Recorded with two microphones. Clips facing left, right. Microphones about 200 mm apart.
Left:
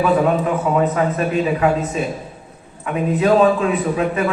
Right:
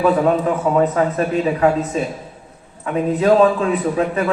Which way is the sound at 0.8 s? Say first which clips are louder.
Right 1 dB; 35° right (ahead or behind).